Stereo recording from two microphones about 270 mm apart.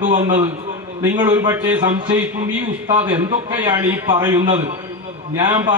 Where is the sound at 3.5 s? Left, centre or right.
Centre.